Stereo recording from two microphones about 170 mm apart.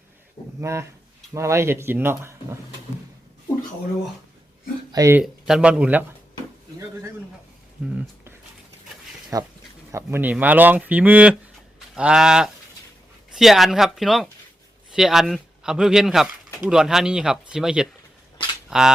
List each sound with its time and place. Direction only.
0.6 s speech: 15° right (ahead or behind)
4.9 s speech: 20° right (ahead or behind)
5.2 s speech: 5° right (ahead or behind)
7.9 s a sound: 15° right (ahead or behind)
9.3 s speech: 20° right (ahead or behind); by 18.9 s 5° right (ahead or behind)